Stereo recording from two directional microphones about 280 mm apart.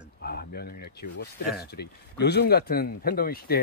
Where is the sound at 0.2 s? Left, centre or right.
Left.